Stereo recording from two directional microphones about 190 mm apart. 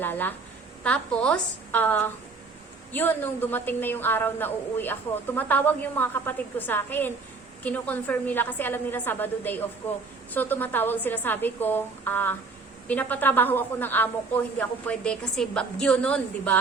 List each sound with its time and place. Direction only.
0.0 s a woman's voice: 10° left (ahead or behind)